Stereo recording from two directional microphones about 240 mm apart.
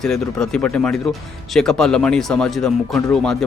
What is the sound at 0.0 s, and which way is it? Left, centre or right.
Speech, centre.